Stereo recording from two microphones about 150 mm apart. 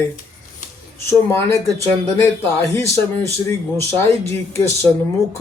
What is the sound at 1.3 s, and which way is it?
Speech, 15° left (ahead or behind).